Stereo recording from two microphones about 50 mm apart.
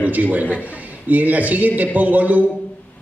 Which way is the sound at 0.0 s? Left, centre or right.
Right.